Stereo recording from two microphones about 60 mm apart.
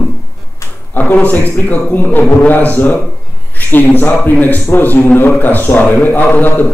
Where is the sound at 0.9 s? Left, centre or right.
Left.